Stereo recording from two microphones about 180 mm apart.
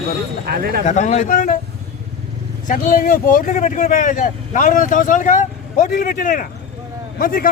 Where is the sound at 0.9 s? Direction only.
40° left (ahead or behind).